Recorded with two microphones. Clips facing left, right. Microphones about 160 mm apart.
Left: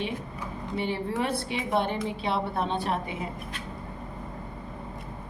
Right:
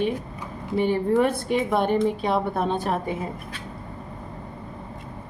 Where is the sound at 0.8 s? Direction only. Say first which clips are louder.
Right 9 dB; 50° right (ahead or behind).